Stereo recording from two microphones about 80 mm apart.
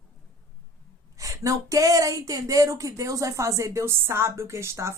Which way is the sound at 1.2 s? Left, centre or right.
Right.